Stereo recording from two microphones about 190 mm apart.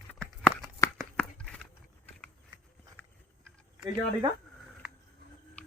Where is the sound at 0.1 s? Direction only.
5° left (ahead or behind).